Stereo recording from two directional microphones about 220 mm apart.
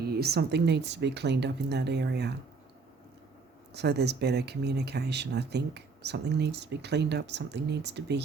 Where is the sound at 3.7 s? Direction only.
50° right (ahead or behind).